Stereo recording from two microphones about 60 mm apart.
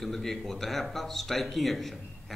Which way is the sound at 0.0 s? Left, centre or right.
Centre.